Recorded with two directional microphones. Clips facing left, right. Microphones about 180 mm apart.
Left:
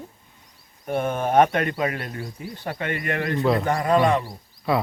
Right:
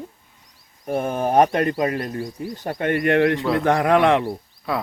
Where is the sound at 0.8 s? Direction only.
35° right (ahead or behind).